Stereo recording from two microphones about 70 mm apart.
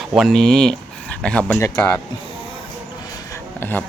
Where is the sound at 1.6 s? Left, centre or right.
Left.